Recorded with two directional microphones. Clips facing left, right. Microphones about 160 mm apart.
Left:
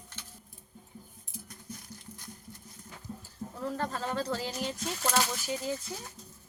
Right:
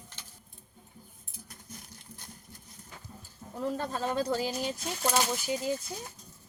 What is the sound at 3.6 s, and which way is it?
Speech, 15° right (ahead or behind).